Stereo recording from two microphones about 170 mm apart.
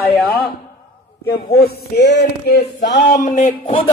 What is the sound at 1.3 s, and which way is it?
Speech, 65° left (ahead or behind).